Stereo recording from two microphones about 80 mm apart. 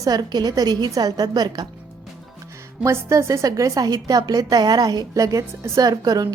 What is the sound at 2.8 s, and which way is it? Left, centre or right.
A woman's voice, right.